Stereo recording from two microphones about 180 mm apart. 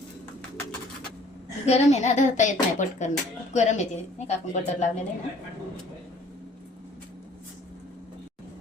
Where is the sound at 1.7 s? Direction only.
40° left (ahead or behind).